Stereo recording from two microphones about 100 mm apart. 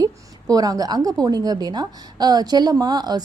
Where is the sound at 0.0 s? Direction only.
35° right (ahead or behind).